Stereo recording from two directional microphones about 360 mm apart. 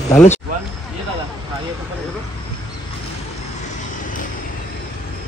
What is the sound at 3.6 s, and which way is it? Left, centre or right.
Vehicle, left.